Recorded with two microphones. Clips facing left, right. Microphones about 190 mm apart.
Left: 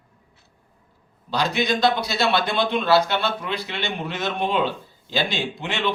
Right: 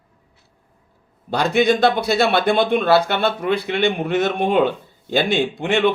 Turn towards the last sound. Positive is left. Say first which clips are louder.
# right 8 dB
turn(degrees=-55)  # may be behind; listen again after turning